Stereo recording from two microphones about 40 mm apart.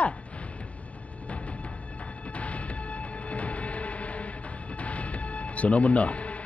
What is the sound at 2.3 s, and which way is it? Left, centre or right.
Music, left.